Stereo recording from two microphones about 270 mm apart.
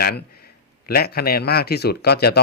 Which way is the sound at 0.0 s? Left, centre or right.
Left.